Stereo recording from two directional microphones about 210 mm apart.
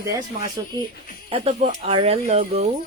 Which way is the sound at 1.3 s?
30° right (ahead or behind).